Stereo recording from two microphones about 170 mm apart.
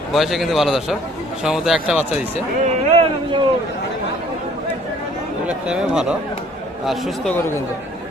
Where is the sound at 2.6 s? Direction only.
35° right (ahead or behind).